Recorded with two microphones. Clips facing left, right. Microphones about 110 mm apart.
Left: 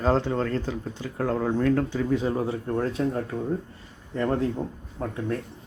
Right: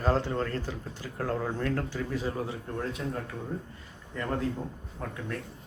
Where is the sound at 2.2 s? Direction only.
30° left (ahead or behind).